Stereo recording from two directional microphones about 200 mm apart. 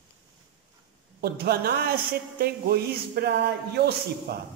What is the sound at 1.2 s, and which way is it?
A man's voice, 50° right (ahead or behind).